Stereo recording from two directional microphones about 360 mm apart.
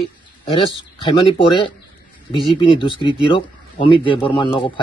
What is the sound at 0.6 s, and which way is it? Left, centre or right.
Speech, centre.